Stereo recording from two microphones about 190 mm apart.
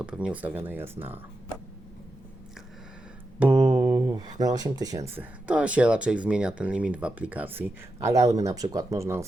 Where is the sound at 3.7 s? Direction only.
20° right (ahead or behind).